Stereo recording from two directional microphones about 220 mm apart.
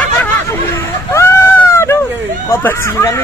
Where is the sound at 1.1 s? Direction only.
10° left (ahead or behind).